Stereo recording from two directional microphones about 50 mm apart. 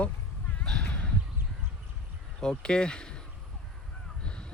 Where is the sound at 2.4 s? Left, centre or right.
Centre.